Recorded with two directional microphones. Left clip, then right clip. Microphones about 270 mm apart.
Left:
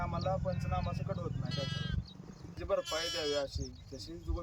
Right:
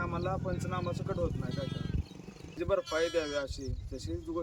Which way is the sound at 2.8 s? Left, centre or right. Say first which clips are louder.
Right 4 dB; left.